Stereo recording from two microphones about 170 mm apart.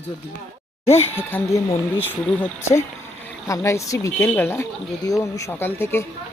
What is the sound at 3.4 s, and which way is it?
Speech, 15° left (ahead or behind).